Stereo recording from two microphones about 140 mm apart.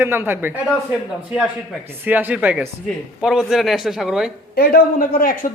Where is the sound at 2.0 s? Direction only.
15° right (ahead or behind).